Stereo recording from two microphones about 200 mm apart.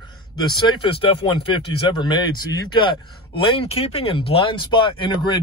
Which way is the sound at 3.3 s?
25° left (ahead or behind).